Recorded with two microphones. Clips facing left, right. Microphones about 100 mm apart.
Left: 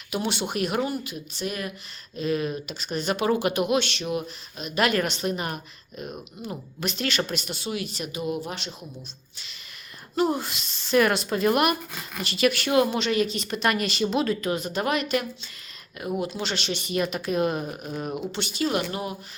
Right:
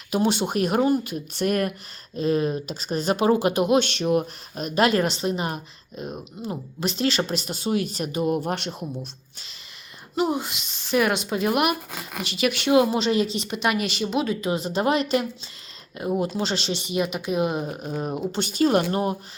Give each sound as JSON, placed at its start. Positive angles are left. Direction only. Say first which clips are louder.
{"t": 0.1, "sound": "speech", "louder": "right 5 dB", "side_deg": -40}
{"t": 2.1, "sound": "speech", "louder": "right 4 dB", "side_deg": -35}
{"t": 4.8, "sound": "speech", "louder": "right 3 dB", "side_deg": -30}
{"t": 10.2, "sound": "speech", "louder": "even", "side_deg": -15}
{"t": 14.4, "sound": "speech", "louder": "right 3 dB", "side_deg": -25}
{"t": 16.9, "sound": "speech", "louder": "right 1 dB", "side_deg": -15}
{"t": 18.3, "sound": "speech", "louder": "right 8 dB", "side_deg": -40}